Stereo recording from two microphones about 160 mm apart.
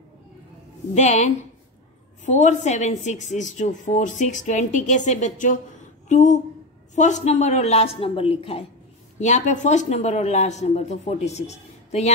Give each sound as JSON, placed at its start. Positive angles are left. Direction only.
{"t": 0.9, "sound": "a woman's voice", "side_deg": 45}
{"t": 9.2, "sound": "a woman's voice", "side_deg": 50}